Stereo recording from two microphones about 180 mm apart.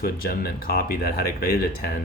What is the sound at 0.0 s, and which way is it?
Speech, 55° left (ahead or behind).